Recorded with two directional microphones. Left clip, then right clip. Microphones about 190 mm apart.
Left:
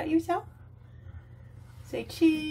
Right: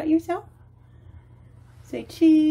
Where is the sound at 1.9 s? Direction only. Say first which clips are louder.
Right 7 dB; 30° right (ahead or behind).